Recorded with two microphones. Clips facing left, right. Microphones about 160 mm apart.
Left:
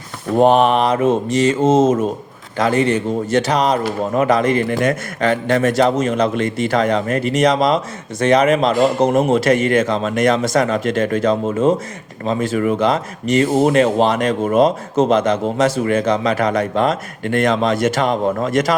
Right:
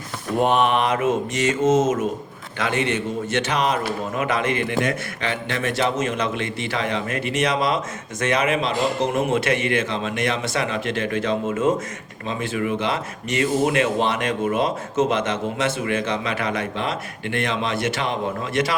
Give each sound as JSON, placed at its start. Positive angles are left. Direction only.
{"t": 0.3, "sound": "speech", "side_deg": 35}